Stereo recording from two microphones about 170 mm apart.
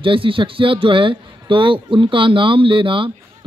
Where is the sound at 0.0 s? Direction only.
30° right (ahead or behind).